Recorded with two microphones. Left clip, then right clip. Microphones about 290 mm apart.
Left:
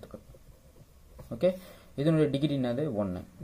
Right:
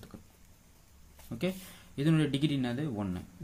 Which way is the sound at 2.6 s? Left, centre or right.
Centre.